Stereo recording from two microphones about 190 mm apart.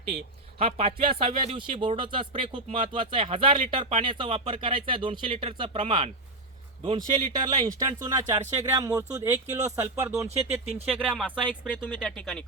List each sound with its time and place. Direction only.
0.6 s speech: 30° right (ahead or behind); by 11.3 s 5° right (ahead or behind)
11.3 s speech: 10° left (ahead or behind)